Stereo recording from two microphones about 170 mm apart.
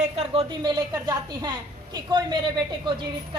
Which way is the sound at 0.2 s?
30° right (ahead or behind).